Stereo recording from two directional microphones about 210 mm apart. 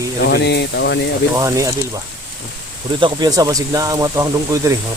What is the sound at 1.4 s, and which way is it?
Speech, 15° right (ahead or behind).